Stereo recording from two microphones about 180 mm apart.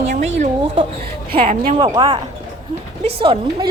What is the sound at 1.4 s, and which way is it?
Speech, 30° right (ahead or behind).